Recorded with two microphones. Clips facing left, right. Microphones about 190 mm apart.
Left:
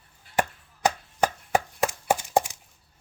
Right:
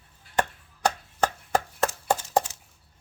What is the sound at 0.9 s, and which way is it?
Chopping, 10° left (ahead or behind).